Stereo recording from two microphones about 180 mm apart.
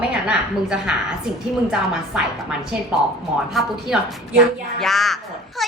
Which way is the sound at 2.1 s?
5° right (ahead or behind).